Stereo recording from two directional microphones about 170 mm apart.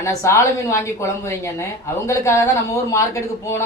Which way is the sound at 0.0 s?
15° left (ahead or behind).